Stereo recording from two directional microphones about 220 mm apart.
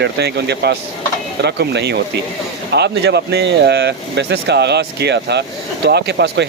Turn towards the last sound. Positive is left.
turn(degrees=-50)  # may be behind; listen again after turning